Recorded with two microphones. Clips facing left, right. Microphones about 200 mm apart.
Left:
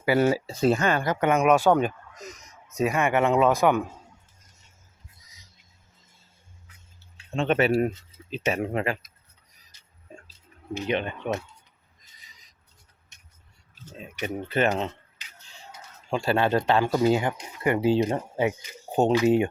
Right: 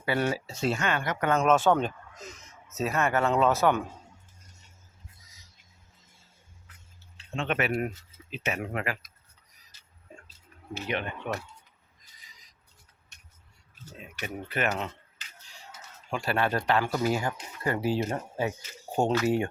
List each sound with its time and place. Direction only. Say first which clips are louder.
0.4 s speech: left 6 dB; 40° left (ahead or behind)
1.3 s speech: left 3 dB; 15° left (ahead or behind)
7.3 s speech: left 7 dB; 30° left (ahead or behind)
9.7 s a sound: left 1 dB; 15° left (ahead or behind)
10.8 s speech: left 5 dB; 20° left (ahead or behind)
13.8 s speech: left 6 dB; 20° left (ahead or behind)
16.0 s speech: left 5 dB; 25° left (ahead or behind)